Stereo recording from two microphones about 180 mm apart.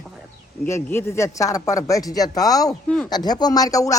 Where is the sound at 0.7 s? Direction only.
15° left (ahead or behind).